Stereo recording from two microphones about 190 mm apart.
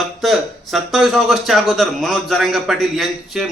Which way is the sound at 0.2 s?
Centre (ahead or behind).